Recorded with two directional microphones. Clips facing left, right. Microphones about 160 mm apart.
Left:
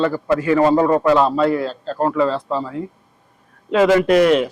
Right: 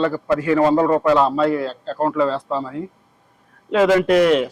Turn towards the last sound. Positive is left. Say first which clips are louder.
# left 1 dB
turn(degrees=10)  # may be behind; listen again after turning